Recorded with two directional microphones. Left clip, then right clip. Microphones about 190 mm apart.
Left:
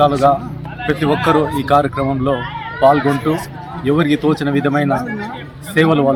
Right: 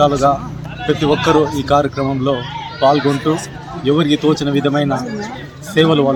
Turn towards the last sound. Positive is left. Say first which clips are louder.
# right 1 dB
turn(degrees=5)  # may be behind; listen again after turning